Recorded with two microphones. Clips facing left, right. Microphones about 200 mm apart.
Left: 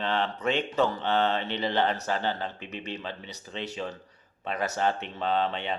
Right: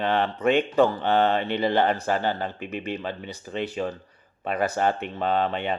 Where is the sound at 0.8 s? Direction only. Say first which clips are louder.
Right 5 dB; 55° right (ahead or behind).